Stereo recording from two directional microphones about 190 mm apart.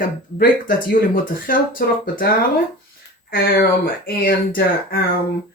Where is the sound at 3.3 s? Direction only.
55° left (ahead or behind).